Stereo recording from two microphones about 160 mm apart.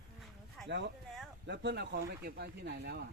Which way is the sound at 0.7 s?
90° right.